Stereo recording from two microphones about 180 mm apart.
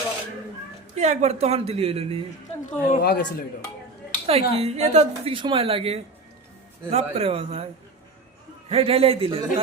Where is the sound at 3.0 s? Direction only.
60° left (ahead or behind).